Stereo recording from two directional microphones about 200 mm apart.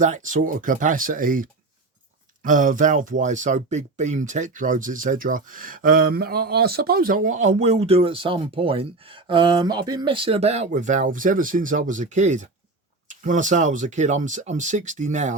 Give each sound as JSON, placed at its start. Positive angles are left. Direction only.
{"t": 0.0, "sound": "speech", "side_deg": -40}